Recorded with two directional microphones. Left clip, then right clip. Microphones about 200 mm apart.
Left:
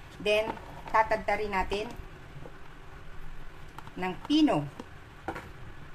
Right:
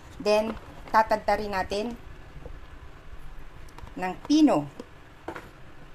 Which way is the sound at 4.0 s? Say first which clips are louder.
Right 4 dB; 30° right (ahead or behind).